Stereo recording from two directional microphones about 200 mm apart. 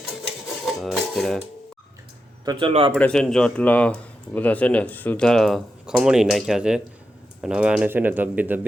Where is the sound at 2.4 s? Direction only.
25° right (ahead or behind).